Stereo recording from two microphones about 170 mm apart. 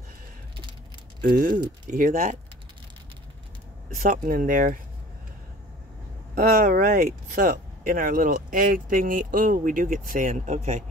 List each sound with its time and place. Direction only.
1.3 s speech: 50° right (ahead or behind)
3.9 s speech: 55° right (ahead or behind)
6.3 s speech: 55° right (ahead or behind)